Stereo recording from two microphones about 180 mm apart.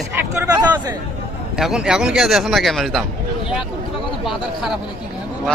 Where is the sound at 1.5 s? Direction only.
5° right (ahead or behind).